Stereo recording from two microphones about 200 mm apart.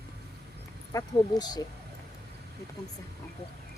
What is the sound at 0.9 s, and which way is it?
Speech, 20° left (ahead or behind).